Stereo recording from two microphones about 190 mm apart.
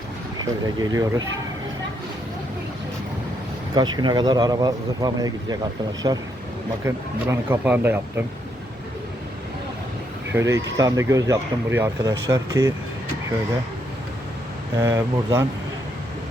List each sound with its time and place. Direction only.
0.8 s speech: 20° right (ahead or behind)
3.8 s speech: 20° right (ahead or behind)
10.3 s speech: 15° right (ahead or behind)
14.8 s speech: 15° right (ahead or behind)